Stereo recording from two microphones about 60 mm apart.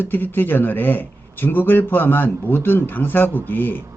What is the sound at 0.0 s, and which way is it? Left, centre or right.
A man's voice, left.